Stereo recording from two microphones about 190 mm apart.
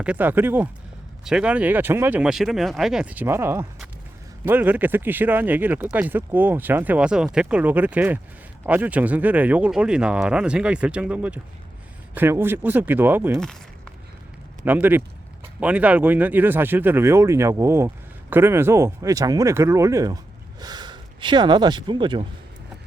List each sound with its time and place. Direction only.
0.0 s speech: 10° right (ahead or behind)
14.6 s speech: 10° right (ahead or behind); by 22.3 s 25° right (ahead or behind)